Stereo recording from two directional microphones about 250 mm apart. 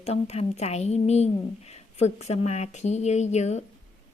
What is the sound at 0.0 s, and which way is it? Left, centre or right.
Speech, left.